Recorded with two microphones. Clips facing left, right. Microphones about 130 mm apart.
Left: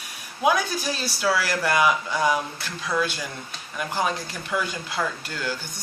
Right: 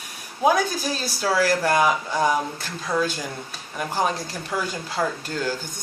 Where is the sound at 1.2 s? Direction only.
40° right (ahead or behind).